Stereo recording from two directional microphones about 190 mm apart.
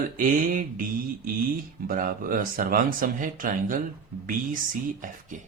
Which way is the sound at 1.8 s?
45° right (ahead or behind).